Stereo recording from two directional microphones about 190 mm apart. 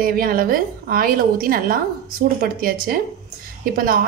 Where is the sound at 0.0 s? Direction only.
50° right (ahead or behind).